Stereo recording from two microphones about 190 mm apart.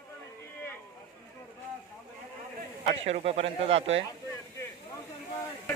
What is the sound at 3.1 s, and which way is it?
Speech, 35° right (ahead or behind).